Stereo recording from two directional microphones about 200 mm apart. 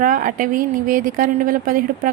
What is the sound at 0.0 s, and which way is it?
A woman's voice, 40° right (ahead or behind).